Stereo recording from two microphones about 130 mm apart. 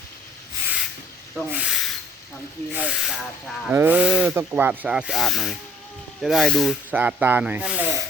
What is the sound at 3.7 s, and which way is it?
A woman's voice, 15° right (ahead or behind).